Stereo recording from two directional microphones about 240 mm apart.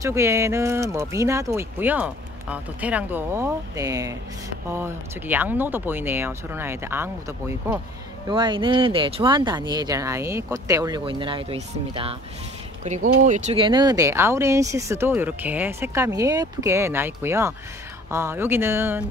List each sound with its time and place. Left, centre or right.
0.0 s speech: centre